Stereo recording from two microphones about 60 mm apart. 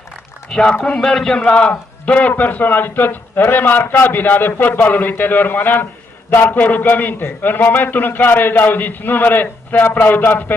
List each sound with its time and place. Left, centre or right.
0.5 s a man's voice: centre
2.0 s a man's voice: left